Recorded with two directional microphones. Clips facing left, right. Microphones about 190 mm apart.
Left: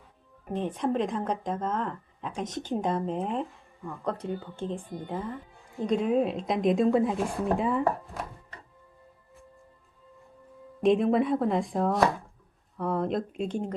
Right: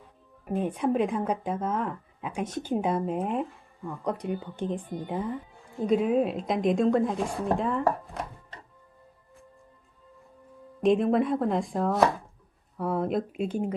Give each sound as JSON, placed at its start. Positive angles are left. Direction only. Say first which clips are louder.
{"t": 0.4, "sound": "speech", "louder": "right 2 dB", "side_deg": -10}
{"t": 5.8, "sound": "speech", "louder": "right 1 dB", "side_deg": -5}
{"t": 10.8, "sound": "speech", "louder": "even", "side_deg": 0}